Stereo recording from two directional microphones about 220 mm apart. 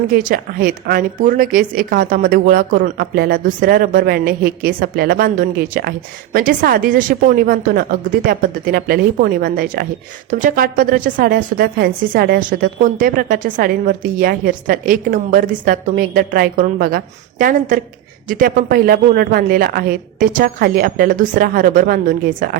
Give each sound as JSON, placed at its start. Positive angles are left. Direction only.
{"t": 0.1, "sound": "a woman's voice", "side_deg": -40}